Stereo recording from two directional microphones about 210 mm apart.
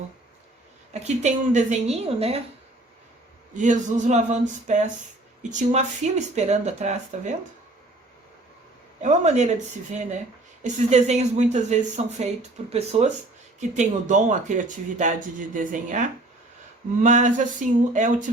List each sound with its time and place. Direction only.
0.9 s speech: 35° right (ahead or behind)
3.6 s speech: 35° right (ahead or behind)
9.0 s speech: 35° right (ahead or behind)
10.6 s speech: 35° right (ahead or behind)